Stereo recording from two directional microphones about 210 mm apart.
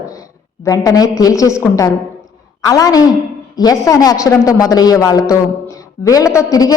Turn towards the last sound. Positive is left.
turn(degrees=15)  # may be behind; listen again after turning